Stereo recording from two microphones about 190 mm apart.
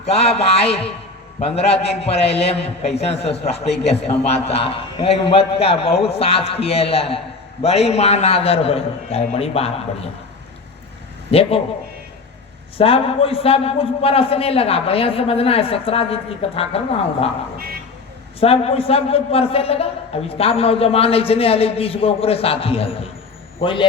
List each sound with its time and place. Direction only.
0.0 s a man's voice: 35° left (ahead or behind)
11.3 s a man's voice: 30° left (ahead or behind)
12.7 s a man's voice: 30° left (ahead or behind)
18.3 s a man's voice: 30° left (ahead or behind)